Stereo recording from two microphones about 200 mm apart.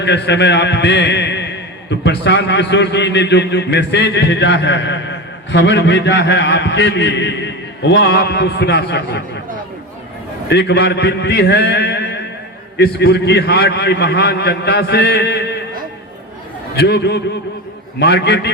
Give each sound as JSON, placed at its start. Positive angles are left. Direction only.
{"t": 0.0, "sound": "a man's voice", "side_deg": 60}
{"t": 10.5, "sound": "a man's voice", "side_deg": 55}
{"t": 16.7, "sound": "a man's voice", "side_deg": 55}